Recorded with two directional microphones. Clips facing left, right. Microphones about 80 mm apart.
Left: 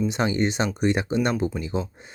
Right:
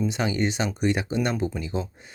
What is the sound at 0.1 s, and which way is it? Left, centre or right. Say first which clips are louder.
Speech: left 2 dB; left.